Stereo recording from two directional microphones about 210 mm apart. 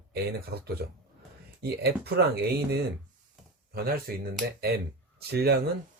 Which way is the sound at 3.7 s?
45° right (ahead or behind).